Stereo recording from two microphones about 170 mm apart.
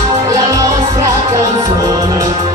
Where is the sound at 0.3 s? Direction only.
20° right (ahead or behind).